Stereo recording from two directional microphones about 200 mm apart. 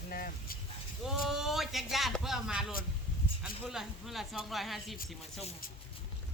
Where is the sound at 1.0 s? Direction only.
Centre (ahead or behind).